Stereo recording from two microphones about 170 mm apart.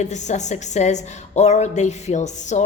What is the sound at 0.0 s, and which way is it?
A woman's voice, 45° left (ahead or behind).